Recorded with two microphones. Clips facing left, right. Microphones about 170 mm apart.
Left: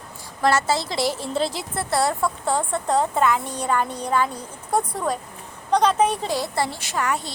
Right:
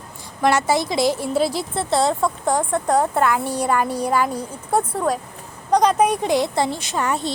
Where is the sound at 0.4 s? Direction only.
15° right (ahead or behind).